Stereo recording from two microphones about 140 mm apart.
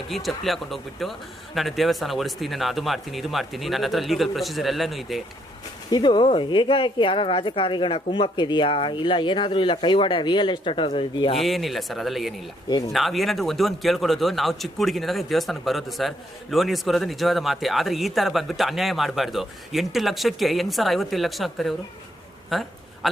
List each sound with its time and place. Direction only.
0.1 s speech: centre (ahead or behind)
5.9 s speech: 35° left (ahead or behind)
11.3 s speech: centre (ahead or behind)
12.6 s speech: 30° left (ahead or behind)
12.9 s speech: centre (ahead or behind)